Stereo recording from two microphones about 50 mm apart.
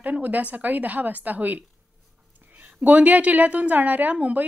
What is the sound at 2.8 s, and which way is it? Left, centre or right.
A woman's voice, right.